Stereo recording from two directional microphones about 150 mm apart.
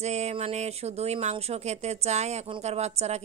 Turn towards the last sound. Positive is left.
turn(degrees=-45)  # may be behind; listen again after turning